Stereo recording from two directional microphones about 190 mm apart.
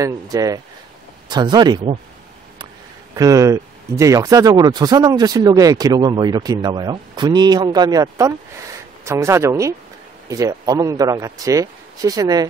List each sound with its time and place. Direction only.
0.0 s speech: 20° right (ahead or behind)
3.2 s speech: 20° right (ahead or behind)